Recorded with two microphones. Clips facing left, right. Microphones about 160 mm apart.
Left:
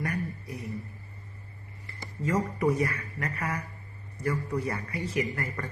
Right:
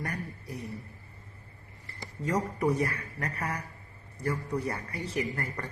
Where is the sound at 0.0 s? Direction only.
35° right (ahead or behind).